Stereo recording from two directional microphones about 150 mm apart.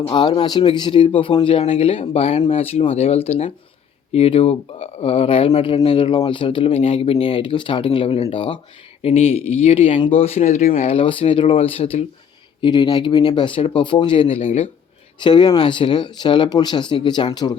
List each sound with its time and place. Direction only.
0.0 s speech: 30° left (ahead or behind); by 10.9 s 50° left (ahead or behind)
10.9 s speech: 35° left (ahead or behind)
15.2 s speech: 30° left (ahead or behind)